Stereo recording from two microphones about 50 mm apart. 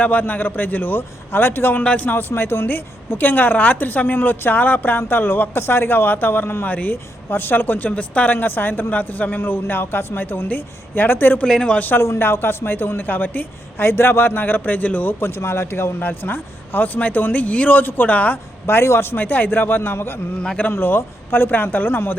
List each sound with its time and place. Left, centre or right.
0.0 s a man's voice: left
9.4 s speech: left
11.4 s a man's voice: centre
11.7 s a man's voice: left
11.9 s speech: left
13.1 s a man's voice: left
15.2 s a man's voice: left
18.6 s speech: left
19.1 s speech: left